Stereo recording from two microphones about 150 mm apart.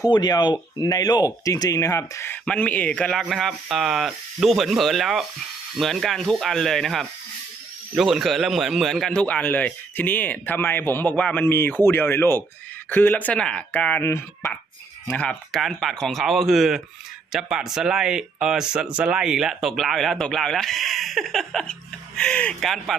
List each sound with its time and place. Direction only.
0.0 s speech: 25° left (ahead or behind); by 23.0 s centre (ahead or behind)